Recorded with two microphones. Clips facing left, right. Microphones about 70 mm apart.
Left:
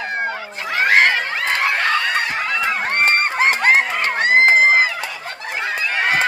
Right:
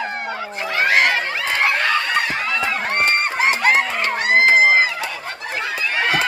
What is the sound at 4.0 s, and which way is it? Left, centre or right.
Crowd, left.